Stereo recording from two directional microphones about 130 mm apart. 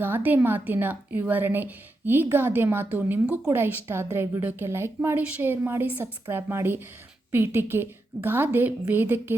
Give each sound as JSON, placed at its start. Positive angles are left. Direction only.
{"t": 0.0, "sound": "a woman's voice", "side_deg": -15}